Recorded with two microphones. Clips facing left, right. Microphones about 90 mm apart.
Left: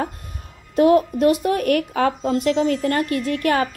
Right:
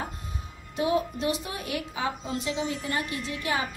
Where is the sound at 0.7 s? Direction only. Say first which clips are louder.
Left 11 dB; 55° left (ahead or behind).